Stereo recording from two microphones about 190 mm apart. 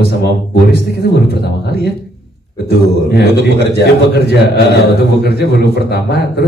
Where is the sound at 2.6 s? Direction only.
60° left (ahead or behind).